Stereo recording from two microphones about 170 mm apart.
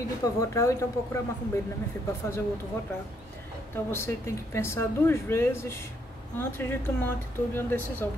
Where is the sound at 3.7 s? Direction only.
15° left (ahead or behind).